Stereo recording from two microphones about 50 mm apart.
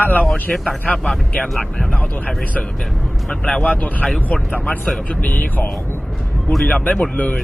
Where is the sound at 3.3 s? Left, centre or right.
Left.